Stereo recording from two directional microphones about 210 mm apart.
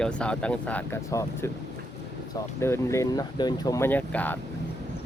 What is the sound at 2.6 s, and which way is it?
Speech, 15° left (ahead or behind).